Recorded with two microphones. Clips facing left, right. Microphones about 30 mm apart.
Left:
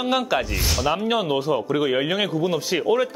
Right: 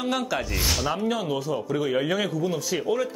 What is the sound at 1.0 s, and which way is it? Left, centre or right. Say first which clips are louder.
Speech: left 5 dB; left.